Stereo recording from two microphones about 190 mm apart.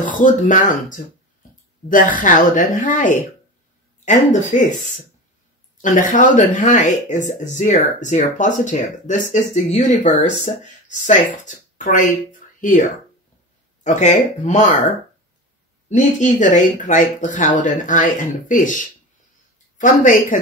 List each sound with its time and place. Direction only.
0.0 s a woman's voice: 45° left (ahead or behind)
5.8 s speech: 40° left (ahead or behind)
13.8 s speech: 40° left (ahead or behind)
15.9 s a woman's voice: 40° left (ahead or behind)